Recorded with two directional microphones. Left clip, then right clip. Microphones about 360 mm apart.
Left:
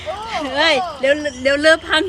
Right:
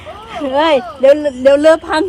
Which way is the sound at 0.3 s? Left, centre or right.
Centre.